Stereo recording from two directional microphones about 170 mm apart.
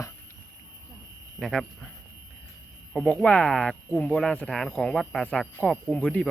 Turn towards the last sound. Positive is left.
turn(degrees=5)  # may be behind; listen again after turning